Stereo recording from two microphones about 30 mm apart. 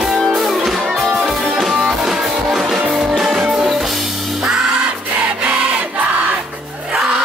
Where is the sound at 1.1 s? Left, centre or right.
Right.